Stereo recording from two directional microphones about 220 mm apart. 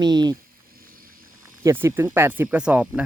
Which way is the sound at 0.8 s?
40° right (ahead or behind).